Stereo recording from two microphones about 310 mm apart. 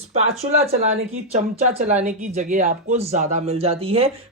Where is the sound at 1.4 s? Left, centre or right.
Right.